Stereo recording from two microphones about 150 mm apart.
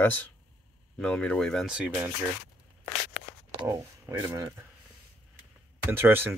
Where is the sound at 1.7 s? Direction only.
10° right (ahead or behind).